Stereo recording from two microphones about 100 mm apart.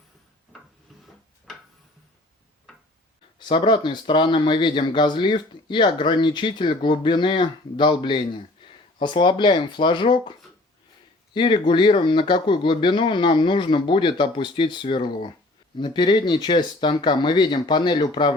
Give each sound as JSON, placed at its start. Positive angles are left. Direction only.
{"t": 3.3, "sound": "speech", "side_deg": 55}
{"t": 11.3, "sound": "speech", "side_deg": 55}